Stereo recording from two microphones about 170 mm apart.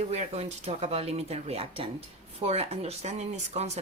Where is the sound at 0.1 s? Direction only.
40° right (ahead or behind).